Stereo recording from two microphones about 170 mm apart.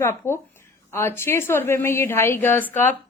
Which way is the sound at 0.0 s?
15° left (ahead or behind).